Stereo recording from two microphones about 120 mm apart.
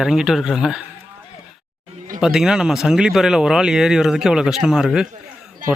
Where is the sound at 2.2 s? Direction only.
5° right (ahead or behind).